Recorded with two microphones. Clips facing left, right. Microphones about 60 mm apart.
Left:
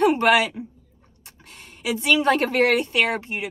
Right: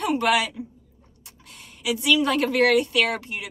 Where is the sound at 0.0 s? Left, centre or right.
Left.